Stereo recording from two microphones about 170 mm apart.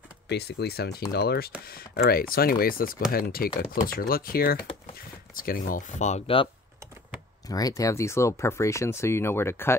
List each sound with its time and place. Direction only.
0.3 s speech: 75° left (ahead or behind); by 6.5 s 30° left (ahead or behind)
7.4 s speech: 20° left (ahead or behind)